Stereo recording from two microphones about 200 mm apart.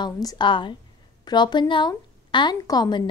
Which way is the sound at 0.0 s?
20° left (ahead or behind).